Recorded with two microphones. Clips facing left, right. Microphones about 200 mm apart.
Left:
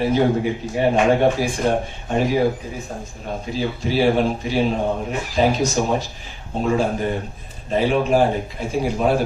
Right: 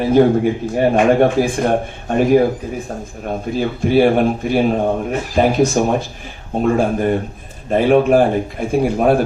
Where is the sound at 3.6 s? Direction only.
55° right (ahead or behind).